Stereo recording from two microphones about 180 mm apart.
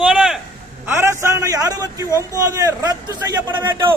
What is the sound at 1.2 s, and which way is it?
Speech, 15° right (ahead or behind).